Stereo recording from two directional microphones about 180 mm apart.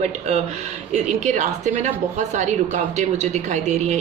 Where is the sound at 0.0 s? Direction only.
35° right (ahead or behind).